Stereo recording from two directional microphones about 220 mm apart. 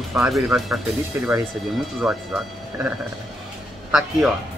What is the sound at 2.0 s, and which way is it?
Speech, centre (ahead or behind).